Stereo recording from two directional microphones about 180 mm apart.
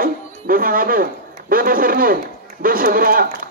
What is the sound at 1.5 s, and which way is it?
A man's voice, 50° right (ahead or behind).